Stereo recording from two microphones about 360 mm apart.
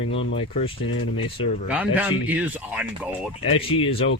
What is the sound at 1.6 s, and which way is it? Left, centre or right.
Speech, centre.